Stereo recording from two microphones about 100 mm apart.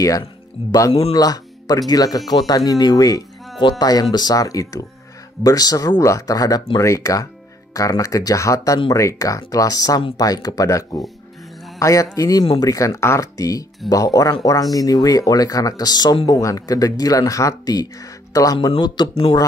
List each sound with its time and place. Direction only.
0.7 s speech: 35° left (ahead or behind)
19.0 s speech: 50° left (ahead or behind)